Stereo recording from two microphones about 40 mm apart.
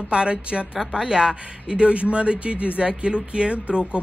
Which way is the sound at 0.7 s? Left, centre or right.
Centre.